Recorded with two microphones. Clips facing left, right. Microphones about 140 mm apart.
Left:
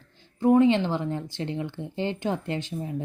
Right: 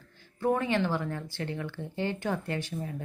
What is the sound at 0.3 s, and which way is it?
Speech, 20° left (ahead or behind).